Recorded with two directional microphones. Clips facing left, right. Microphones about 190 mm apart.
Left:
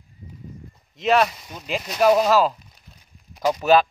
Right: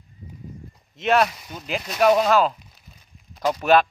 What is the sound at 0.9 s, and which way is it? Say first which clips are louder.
Speech: left 1 dB; centre (ahead or behind).